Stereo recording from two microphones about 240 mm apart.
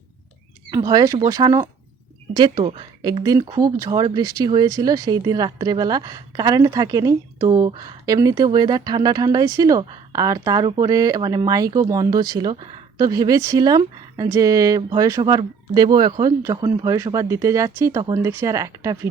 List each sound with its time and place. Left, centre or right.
0.7 s speech: centre